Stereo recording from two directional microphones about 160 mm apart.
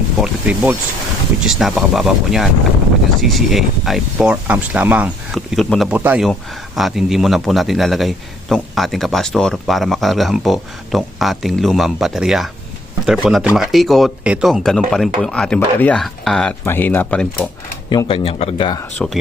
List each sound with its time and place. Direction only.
0.2 s a man's voice: 10° right (ahead or behind)
6.0 s a man's voice: 10° right (ahead or behind); by 17.5 s 5° left (ahead or behind)
17.8 s speech: 30° left (ahead or behind)
18.9 s a man's voice: centre (ahead or behind)